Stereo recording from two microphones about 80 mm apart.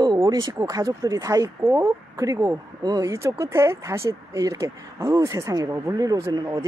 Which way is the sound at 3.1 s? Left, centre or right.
Right.